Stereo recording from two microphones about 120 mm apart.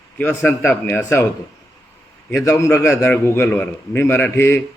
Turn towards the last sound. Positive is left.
turn(degrees=20)  # may be behind; listen again after turning